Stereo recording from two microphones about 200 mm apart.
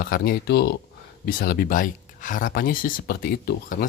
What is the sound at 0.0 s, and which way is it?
Speech, 45° left (ahead or behind).